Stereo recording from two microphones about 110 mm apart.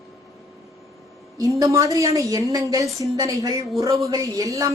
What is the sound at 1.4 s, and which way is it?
A woman's voice, 30° right (ahead or behind).